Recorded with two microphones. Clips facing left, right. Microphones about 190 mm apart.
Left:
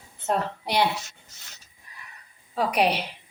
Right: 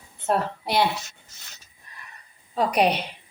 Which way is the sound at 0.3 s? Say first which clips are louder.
Right 2 dB; 15° left (ahead or behind).